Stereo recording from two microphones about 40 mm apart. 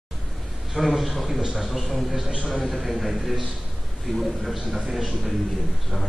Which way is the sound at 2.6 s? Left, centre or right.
Centre.